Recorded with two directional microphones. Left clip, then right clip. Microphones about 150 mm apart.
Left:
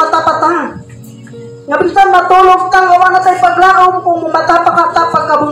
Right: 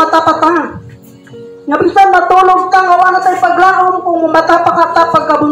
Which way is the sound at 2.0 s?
90° right.